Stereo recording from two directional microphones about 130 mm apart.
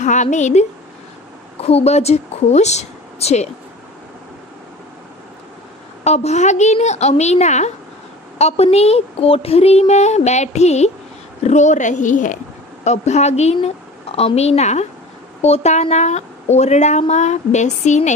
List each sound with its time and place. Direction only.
0.0 s a woman's voice: 65° left (ahead or behind)
1.6 s a woman's voice: 50° left (ahead or behind)
6.0 s a woman's voice: 60° left (ahead or behind); by 12.4 s 75° left (ahead or behind)
12.8 s a woman's voice: 60° left (ahead or behind)